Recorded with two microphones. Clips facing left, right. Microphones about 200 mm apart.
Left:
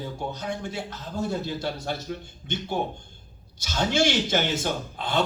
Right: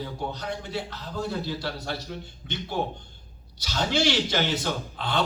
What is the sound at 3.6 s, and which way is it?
Speech, 50° left (ahead or behind).